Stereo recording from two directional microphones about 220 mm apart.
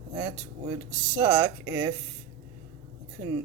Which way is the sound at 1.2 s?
15° right (ahead or behind).